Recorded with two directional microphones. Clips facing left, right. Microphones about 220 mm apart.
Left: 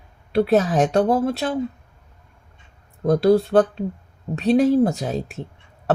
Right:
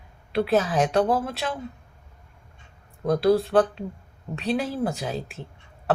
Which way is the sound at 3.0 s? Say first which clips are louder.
Left 4 dB; 40° left (ahead or behind).